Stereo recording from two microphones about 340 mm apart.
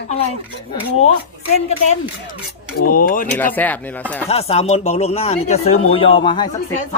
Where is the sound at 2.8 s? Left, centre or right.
Left.